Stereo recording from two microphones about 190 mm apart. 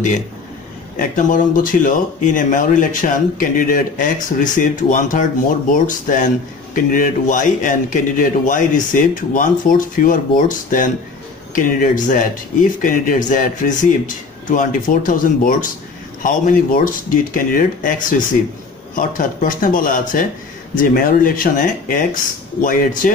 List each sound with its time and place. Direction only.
0.9 s speech: 45° left (ahead or behind)